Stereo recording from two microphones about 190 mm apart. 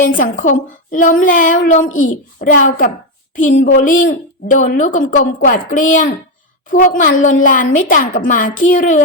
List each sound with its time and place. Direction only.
0.2 s a woman's voice: 45° left (ahead or behind)